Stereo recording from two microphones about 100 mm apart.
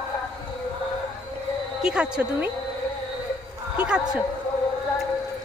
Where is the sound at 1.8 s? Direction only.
10° right (ahead or behind).